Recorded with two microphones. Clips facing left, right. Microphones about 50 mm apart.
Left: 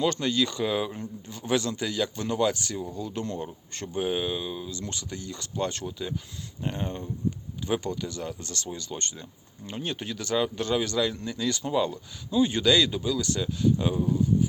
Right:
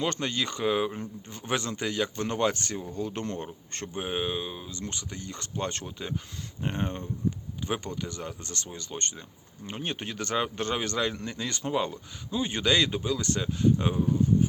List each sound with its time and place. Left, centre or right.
0.0 s a man's voice: right
3.9 s a man's voice: right